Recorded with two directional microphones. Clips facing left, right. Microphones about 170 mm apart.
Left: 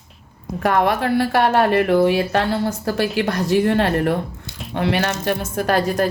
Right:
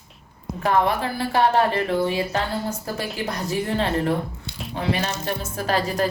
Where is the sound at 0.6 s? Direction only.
65° left (ahead or behind).